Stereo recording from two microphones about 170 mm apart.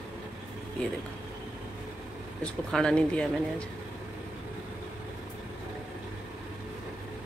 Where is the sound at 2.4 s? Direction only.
5° left (ahead or behind).